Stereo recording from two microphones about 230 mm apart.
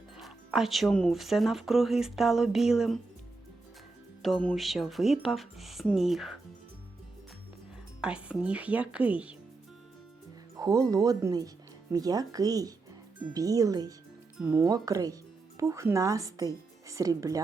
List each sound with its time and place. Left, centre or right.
0.2 s speech: centre
4.2 s speech: centre
8.0 s speech: centre
10.6 s speech: centre